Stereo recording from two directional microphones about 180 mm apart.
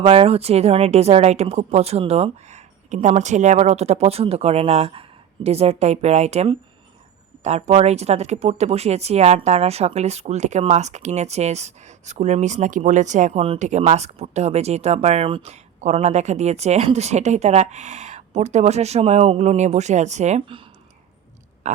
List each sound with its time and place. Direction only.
0.0 s speech: 30° right (ahead or behind)